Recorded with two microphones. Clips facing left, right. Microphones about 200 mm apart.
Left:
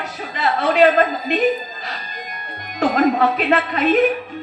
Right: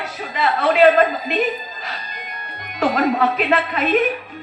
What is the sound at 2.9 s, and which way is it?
Speech, 40° left (ahead or behind).